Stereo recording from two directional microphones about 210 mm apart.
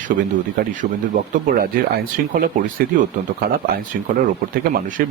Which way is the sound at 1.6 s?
45° right (ahead or behind).